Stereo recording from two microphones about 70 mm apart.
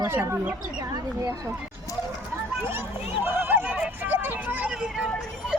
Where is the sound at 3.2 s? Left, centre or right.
Right.